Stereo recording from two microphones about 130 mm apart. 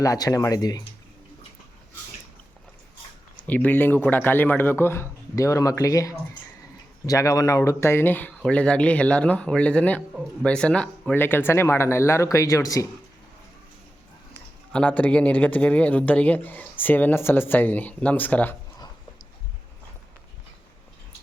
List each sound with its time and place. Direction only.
0.0 s speech: 25° left (ahead or behind)
3.4 s speech: 10° left (ahead or behind)
14.7 s speech: 10° left (ahead or behind)